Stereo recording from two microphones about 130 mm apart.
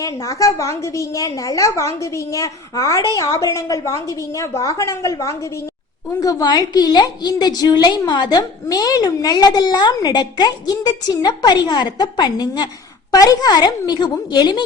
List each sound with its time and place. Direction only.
0.0 s a woman's voice: 25° left (ahead or behind)